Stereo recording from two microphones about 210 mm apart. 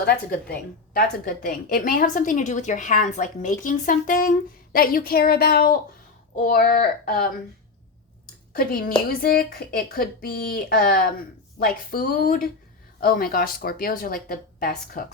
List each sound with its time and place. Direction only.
0.0 s a woman's voice: 45° left (ahead or behind)
9.0 s speech: 45° left (ahead or behind)